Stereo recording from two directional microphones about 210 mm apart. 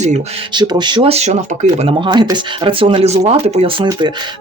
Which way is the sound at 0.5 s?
20° right (ahead or behind).